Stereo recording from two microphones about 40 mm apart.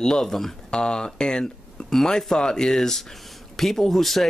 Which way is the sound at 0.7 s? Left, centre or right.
Left.